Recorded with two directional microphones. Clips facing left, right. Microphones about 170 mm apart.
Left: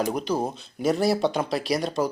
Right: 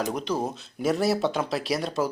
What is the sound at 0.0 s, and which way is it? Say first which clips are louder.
Speech: left 2 dB; 5° left (ahead or behind).